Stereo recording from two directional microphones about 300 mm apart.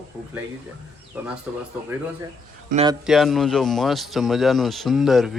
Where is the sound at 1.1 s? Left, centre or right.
Centre.